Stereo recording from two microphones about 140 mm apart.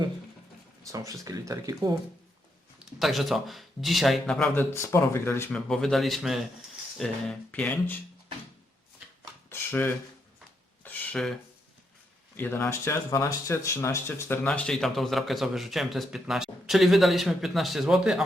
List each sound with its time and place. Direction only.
0.9 s speech: 25° right (ahead or behind)
2.7 s a man's voice: centre (ahead or behind); by 5.5 s 15° left (ahead or behind)
5.5 s a man's voice: 5° left (ahead or behind)
9.5 s a sound: 15° left (ahead or behind)
12.4 s speech: 15° left (ahead or behind)
14.4 s a man's voice: 10° left (ahead or behind)